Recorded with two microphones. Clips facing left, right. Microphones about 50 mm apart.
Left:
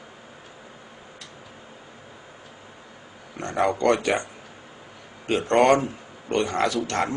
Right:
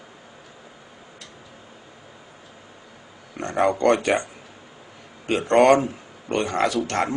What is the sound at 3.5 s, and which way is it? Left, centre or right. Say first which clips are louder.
Speech: right 2 dB; right.